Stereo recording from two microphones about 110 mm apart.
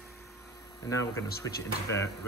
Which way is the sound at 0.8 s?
30° left (ahead or behind).